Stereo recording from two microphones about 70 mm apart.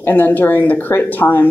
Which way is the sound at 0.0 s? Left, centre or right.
Left.